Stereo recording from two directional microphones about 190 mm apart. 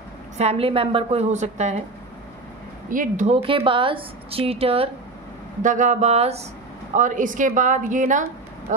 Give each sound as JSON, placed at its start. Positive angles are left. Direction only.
{"t": 0.4, "sound": "a woman's voice", "side_deg": -30}
{"t": 2.9, "sound": "speech", "side_deg": -45}
{"t": 3.4, "sound": "a woman's voice", "side_deg": -25}
{"t": 5.6, "sound": "a woman's voice", "side_deg": -40}